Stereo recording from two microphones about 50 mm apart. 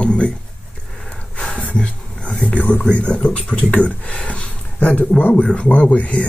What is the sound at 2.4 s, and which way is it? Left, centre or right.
Speech, left.